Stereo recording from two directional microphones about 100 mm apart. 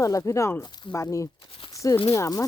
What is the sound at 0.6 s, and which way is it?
Speech, 45° left (ahead or behind).